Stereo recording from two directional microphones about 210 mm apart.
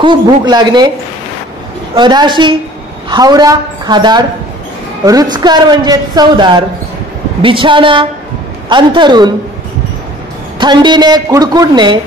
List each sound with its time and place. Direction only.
0.0 s a woman's voice: 20° right (ahead or behind)
2.0 s a woman's voice: 20° right (ahead or behind)
10.6 s a woman's voice: 20° right (ahead or behind)